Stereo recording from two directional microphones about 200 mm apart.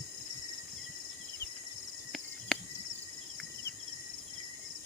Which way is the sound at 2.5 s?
Centre (ahead or behind).